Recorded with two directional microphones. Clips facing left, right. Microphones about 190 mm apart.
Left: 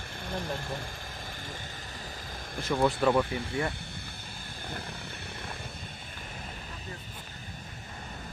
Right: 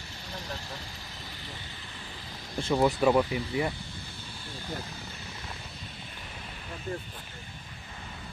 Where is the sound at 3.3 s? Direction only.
50° left (ahead or behind).